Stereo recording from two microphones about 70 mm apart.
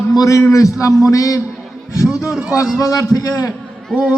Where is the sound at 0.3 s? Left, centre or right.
Left.